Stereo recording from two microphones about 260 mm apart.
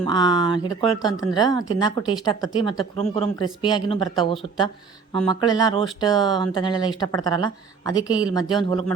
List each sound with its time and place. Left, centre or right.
0.0 s speech: centre